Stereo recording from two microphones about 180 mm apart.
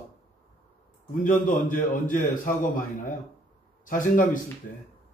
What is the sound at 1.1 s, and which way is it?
A man's voice, 45° left (ahead or behind).